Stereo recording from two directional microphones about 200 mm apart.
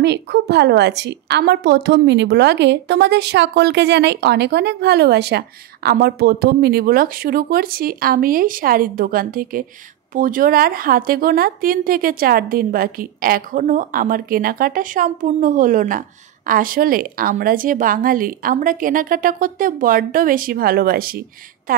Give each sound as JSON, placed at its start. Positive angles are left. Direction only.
{"t": 0.0, "sound": "a woman's voice", "side_deg": -60}